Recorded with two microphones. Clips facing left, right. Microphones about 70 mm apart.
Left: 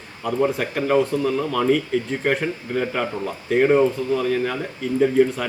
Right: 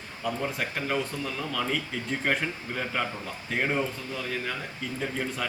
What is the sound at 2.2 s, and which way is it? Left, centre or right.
Speech, centre.